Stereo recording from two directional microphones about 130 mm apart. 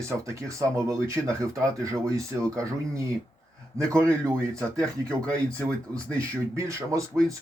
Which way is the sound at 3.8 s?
25° right (ahead or behind).